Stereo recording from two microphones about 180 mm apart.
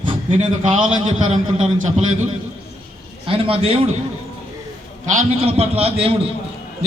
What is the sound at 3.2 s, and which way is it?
Speech, 30° right (ahead or behind).